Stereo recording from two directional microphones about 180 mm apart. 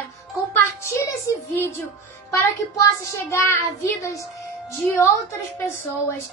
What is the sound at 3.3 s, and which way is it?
Speech, 15° left (ahead or behind).